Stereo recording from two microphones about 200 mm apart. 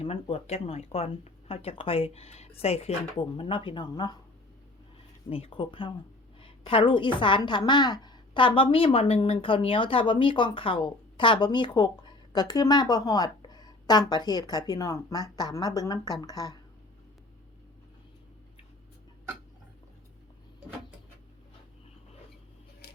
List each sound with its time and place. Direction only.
0.0 s a woman's voice: 30° left (ahead or behind)
5.3 s a woman's voice: 25° left (ahead or behind)